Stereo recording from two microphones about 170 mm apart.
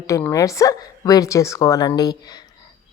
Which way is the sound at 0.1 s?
20° left (ahead or behind).